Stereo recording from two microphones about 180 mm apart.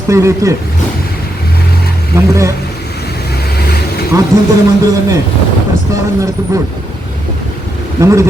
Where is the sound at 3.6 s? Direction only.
60° left (ahead or behind).